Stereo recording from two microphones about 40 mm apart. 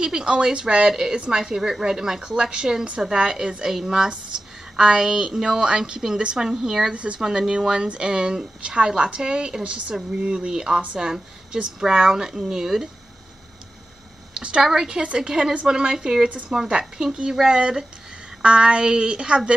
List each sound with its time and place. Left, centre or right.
0.0 s a woman's voice: centre
6.9 s a woman's voice: right
7.2 s a woman's voice: centre
14.3 s a sound: right
14.6 s a woman's voice: centre